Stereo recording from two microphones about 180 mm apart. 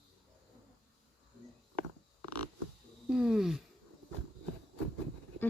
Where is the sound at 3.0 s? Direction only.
5° right (ahead or behind).